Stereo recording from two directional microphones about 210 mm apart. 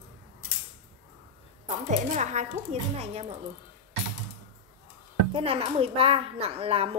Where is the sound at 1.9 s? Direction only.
35° right (ahead or behind).